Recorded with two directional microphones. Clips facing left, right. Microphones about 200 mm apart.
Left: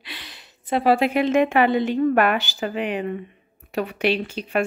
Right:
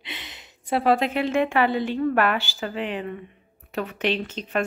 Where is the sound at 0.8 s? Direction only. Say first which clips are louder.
Left 3 dB; 5° left (ahead or behind).